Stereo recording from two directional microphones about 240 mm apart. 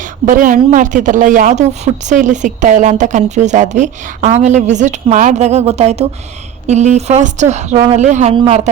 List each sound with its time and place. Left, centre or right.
0.3 s a woman's voice: right